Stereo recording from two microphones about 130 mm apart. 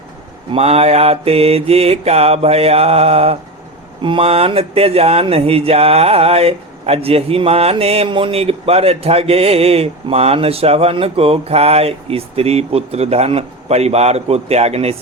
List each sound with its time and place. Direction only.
0.5 s speech: 50° right (ahead or behind)